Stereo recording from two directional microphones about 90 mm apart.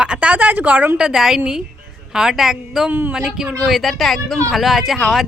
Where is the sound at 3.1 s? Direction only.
5° right (ahead or behind).